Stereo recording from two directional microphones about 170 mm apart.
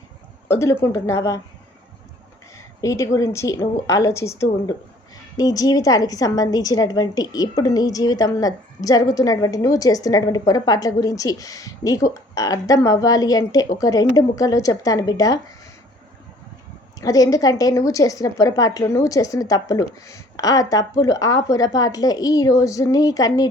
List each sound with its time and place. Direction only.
0.4 s a woman's voice: 15° left (ahead or behind)
2.6 s a woman's voice: 20° left (ahead or behind)
17.0 s a woman's voice: 20° left (ahead or behind)